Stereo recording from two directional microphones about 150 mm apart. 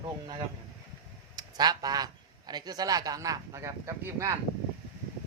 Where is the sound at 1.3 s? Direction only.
25° right (ahead or behind).